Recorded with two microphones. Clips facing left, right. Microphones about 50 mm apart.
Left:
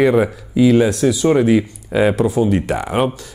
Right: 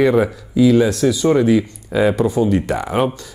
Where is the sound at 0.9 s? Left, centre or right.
Centre.